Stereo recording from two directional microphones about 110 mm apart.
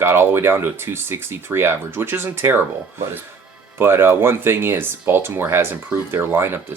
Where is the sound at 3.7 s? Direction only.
20° right (ahead or behind).